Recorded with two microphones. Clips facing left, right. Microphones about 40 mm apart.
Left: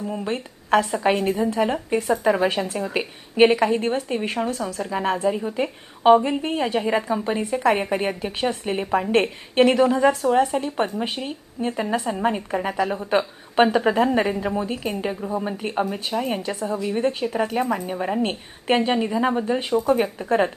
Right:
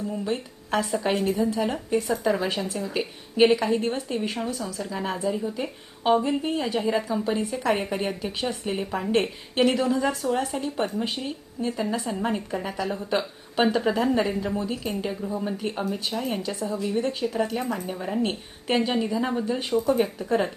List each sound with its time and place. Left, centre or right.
0.1 s a woman's voice: left
12.1 s a woman's voice: left
12.5 s a woman's voice: left
16.4 s a woman's voice: left